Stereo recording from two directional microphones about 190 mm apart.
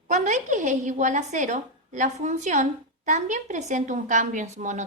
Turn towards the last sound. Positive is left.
turn(degrees=-40)  # may be behind; listen again after turning